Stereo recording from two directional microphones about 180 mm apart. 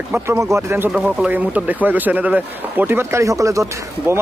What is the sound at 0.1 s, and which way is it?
Speech, 15° right (ahead or behind).